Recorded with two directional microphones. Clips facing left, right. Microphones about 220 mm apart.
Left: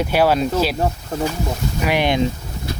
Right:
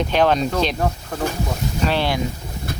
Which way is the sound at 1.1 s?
25° left (ahead or behind).